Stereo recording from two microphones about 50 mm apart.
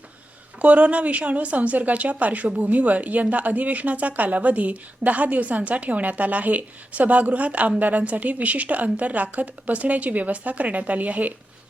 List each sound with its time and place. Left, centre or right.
0.6 s a woman's voice: right